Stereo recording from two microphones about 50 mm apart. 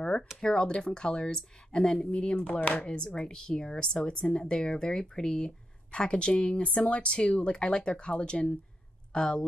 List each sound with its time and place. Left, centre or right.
0.4 s speech: centre; by 2.9 s left
3.2 s speech: centre